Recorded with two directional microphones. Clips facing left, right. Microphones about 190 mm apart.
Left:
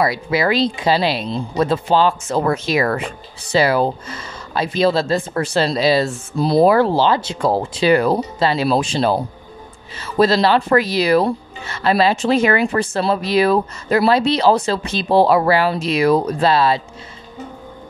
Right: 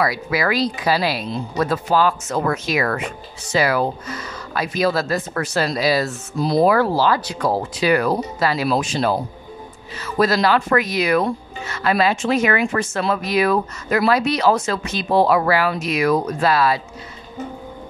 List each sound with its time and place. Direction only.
0.0 s speech: 25° left (ahead or behind)